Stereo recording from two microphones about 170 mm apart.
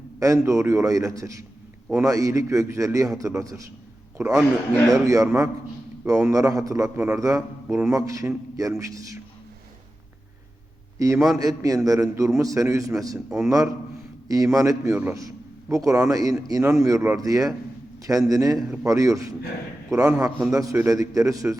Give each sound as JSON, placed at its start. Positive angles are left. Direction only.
{"t": 0.2, "sound": "a man's voice", "side_deg": -20}
{"t": 11.0, "sound": "a man's voice", "side_deg": -20}
{"t": 18.5, "sound": "a man's voice", "side_deg": -5}
{"t": 18.9, "sound": "a man's voice", "side_deg": -20}
{"t": 20.0, "sound": "a man's voice", "side_deg": -10}
{"t": 20.2, "sound": "a man's voice", "side_deg": -20}